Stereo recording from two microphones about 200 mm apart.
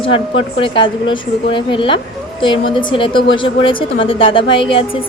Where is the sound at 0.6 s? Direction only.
25° left (ahead or behind).